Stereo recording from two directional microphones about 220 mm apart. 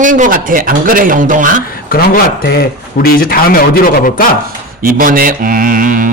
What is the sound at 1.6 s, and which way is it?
Speech, 40° left (ahead or behind).